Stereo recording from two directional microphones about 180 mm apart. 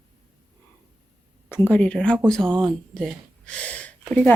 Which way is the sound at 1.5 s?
10° left (ahead or behind).